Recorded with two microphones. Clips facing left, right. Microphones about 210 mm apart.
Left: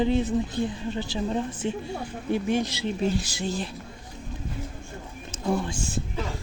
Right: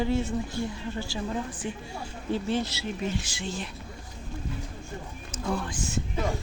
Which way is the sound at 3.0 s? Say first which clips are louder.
Left 6 dB; 35° left (ahead or behind).